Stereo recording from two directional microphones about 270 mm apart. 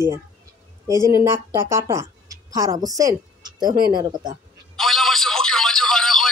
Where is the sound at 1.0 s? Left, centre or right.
Centre.